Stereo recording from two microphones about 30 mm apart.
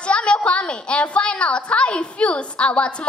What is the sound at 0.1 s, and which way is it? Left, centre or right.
A woman's voice, left.